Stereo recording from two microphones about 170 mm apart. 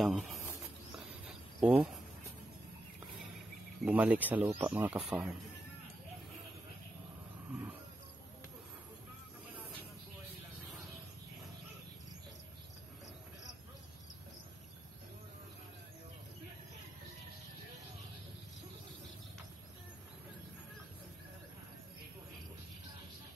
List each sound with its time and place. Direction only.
0.0 s speech: centre (ahead or behind)
1.6 s speech: 5° right (ahead or behind)
3.8 s speech: 10° right (ahead or behind)